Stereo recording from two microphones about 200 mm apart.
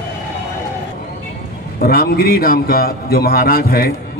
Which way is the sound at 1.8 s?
50° left (ahead or behind).